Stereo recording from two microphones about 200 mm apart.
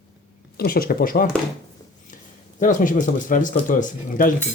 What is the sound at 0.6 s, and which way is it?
Speech, 50° left (ahead or behind).